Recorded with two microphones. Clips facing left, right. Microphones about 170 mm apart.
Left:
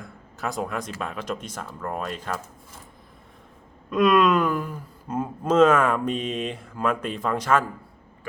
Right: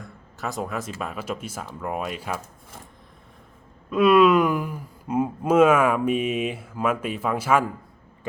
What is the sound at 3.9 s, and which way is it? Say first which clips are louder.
Speech: right 3 dB; 5° right (ahead or behind).